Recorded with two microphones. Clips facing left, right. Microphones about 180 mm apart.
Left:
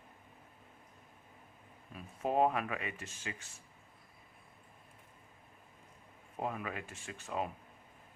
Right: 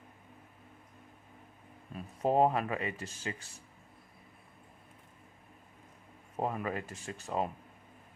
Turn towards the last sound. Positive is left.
turn(degrees=-35)  # may be behind; listen again after turning